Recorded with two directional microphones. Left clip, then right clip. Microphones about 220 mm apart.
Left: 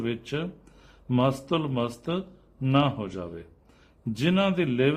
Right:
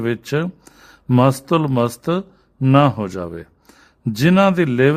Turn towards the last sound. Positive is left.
turn(degrees=-45)  # may be behind; listen again after turning